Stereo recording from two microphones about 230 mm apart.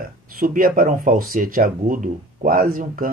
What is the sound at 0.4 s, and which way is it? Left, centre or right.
Speech, right.